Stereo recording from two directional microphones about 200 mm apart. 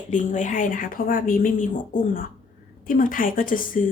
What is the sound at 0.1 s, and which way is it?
Speech, 40° left (ahead or behind).